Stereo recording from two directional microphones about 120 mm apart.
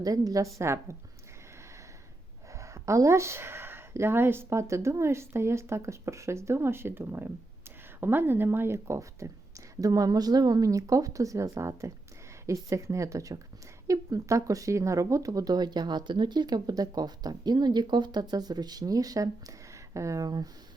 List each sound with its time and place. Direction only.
0.0 s speech: 30° right (ahead or behind)
2.5 s speech: 25° right (ahead or behind)